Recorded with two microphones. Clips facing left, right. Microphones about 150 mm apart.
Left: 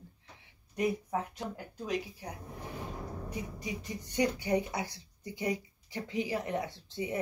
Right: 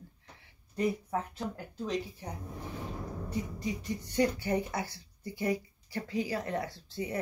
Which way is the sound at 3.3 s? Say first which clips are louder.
Right 5 dB; 15° left (ahead or behind).